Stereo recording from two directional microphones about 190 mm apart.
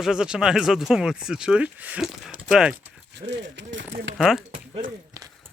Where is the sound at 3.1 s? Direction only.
65° right (ahead or behind).